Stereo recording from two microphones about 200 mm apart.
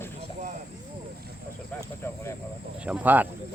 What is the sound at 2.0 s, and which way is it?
Speech, 15° left (ahead or behind).